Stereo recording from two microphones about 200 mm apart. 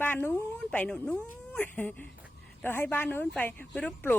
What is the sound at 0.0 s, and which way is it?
A woman's voice, 10° left (ahead or behind).